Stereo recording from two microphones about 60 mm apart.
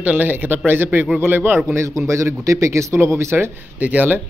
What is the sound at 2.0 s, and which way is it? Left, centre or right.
Speech, right.